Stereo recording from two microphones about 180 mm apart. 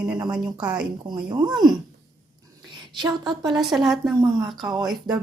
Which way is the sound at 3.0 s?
25° right (ahead or behind).